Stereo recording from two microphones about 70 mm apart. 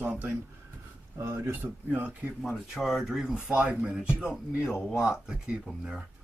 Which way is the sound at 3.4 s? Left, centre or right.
Centre.